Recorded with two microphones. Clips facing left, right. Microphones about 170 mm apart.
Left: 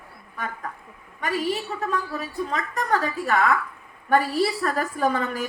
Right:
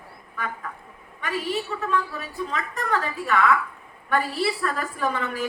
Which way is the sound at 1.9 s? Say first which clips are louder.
Right 1 dB; 40° left (ahead or behind).